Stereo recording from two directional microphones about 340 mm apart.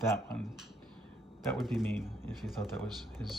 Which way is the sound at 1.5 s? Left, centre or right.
Centre.